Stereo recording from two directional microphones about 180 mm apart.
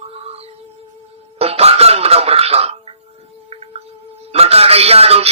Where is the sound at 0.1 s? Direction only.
35° right (ahead or behind).